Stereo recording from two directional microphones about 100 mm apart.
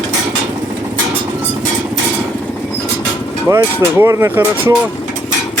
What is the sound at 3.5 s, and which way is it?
Speech, 30° right (ahead or behind).